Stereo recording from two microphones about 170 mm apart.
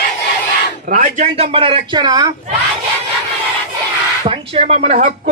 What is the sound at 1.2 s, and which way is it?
Speech, 35° right (ahead or behind).